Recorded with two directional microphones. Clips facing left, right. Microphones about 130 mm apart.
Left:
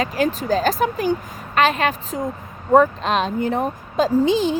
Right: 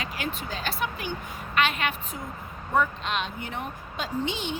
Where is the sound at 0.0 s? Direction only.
40° left (ahead or behind).